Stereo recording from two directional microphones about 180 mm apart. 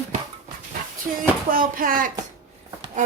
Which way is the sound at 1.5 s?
50° right (ahead or behind).